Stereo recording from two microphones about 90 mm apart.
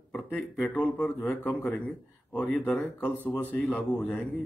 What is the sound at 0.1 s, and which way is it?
Speech, 15° left (ahead or behind).